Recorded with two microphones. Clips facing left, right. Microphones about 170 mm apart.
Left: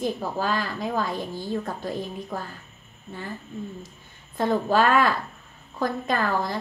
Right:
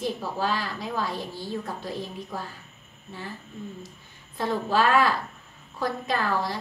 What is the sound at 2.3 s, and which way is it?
Speech, 50° left (ahead or behind).